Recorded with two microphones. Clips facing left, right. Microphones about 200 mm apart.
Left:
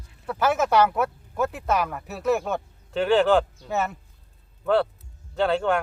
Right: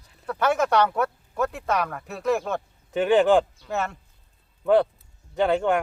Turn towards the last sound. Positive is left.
turn(degrees=-15)  # may be behind; listen again after turning